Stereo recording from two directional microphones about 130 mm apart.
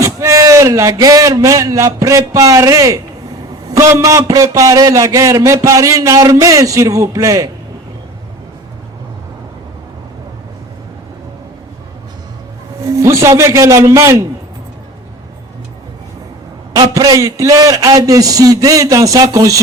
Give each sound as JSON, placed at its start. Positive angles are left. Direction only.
{"t": 0.0, "sound": "a man's voice", "side_deg": -25}
{"t": 12.8, "sound": "a man's voice", "side_deg": -25}
{"t": 16.7, "sound": "a man's voice", "side_deg": -30}